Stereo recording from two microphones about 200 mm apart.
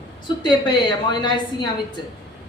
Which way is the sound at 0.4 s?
20° left (ahead or behind).